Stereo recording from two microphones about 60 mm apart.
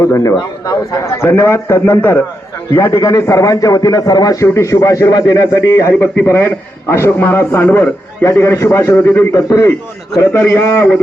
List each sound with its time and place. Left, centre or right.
0.2 s speech: left
1.0 s a man's voice: left
1.8 s a man's voice: left
2.7 s a man's voice: left
4.6 s speech: left
5.5 s a man's voice: left
8.3 s a man's voice: left
9.3 s a man's voice: left
10.7 s a man's voice: left